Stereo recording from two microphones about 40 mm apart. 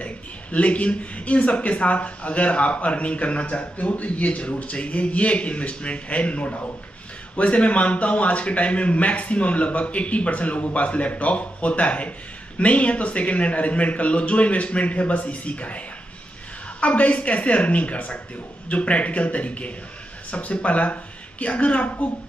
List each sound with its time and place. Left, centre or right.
0.0 s a man's voice: left
16.8 s a man's voice: left